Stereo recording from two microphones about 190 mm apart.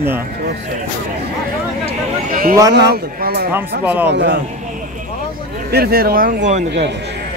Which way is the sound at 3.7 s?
55° right (ahead or behind).